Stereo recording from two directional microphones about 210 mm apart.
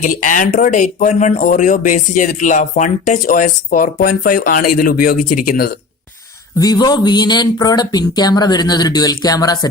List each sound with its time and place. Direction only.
0.0 s speech: 35° left (ahead or behind)
6.6 s speech: 20° left (ahead or behind)